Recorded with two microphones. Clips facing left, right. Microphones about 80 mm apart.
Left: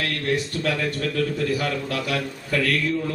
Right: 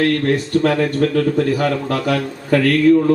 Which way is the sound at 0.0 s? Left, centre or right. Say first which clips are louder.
Right 8 dB; right.